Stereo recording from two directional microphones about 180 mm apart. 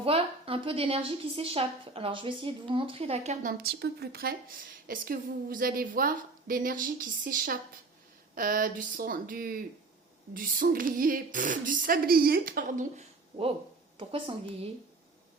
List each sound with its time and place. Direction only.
0.0 s a woman's voice: 30° right (ahead or behind)
3.6 s speech: 65° right (ahead or behind); by 13.5 s 40° right (ahead or behind)